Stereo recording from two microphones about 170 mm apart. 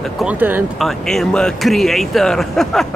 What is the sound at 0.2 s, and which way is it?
Speech, 10° right (ahead or behind).